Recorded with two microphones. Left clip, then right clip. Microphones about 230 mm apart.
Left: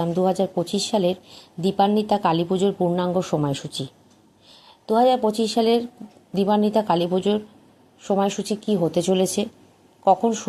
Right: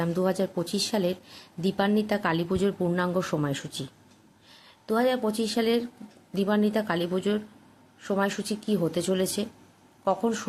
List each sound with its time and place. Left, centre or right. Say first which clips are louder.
0.0 s speech: left 5 dB; centre
1.3 s a woman's voice: left 5 dB; centre
1.9 s speech: left 6 dB; centre
5.1 s speech: left 7 dB; centre